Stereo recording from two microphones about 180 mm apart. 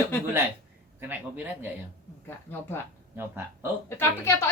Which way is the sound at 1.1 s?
10° right (ahead or behind).